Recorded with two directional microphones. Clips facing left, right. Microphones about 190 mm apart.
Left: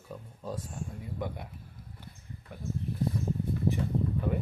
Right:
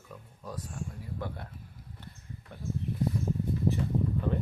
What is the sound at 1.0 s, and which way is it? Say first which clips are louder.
Speech: left 4 dB; 15° left (ahead or behind).